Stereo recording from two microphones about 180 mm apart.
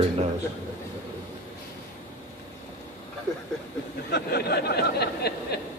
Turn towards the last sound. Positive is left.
turn(degrees=65)  # may be behind; listen again after turning